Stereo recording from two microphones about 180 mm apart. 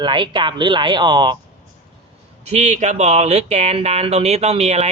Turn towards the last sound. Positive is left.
turn(degrees=-40)  # may be behind; listen again after turning